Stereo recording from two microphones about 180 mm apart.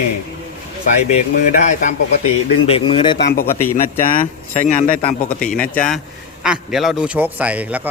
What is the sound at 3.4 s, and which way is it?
Speech, 15° left (ahead or behind).